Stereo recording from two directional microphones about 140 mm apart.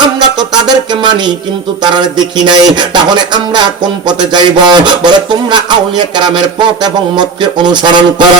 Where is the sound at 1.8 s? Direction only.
30° right (ahead or behind).